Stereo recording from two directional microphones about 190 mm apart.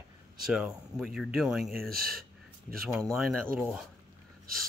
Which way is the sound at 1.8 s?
50° right (ahead or behind).